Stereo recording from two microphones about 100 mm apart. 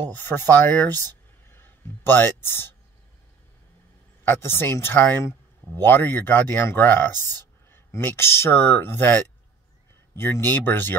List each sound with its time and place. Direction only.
0.1 s speech: 20° left (ahead or behind)
4.2 s speech: 20° left (ahead or behind)